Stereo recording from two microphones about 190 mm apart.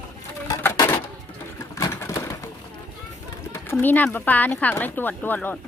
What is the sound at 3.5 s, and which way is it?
Speech, 10° left (ahead or behind).